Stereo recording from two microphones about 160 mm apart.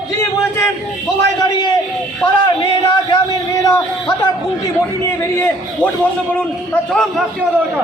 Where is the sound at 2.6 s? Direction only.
30° left (ahead or behind).